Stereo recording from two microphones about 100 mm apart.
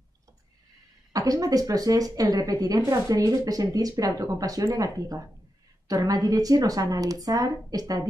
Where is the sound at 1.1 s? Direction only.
35° right (ahead or behind).